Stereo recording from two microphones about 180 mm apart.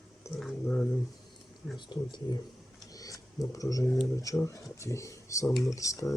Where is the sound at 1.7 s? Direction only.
25° left (ahead or behind).